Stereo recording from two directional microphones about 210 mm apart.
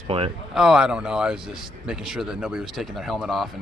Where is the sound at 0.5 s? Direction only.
5° right (ahead or behind).